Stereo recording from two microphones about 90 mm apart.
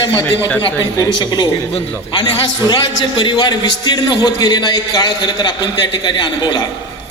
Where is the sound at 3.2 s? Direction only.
50° left (ahead or behind).